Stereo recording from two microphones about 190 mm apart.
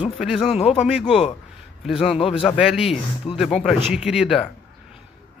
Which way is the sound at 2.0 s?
30° left (ahead or behind).